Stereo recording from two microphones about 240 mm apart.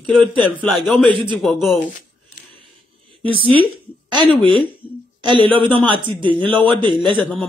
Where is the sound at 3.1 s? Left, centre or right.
Right.